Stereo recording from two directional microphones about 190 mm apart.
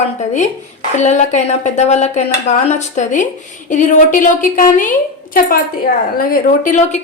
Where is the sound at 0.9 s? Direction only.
40° left (ahead or behind).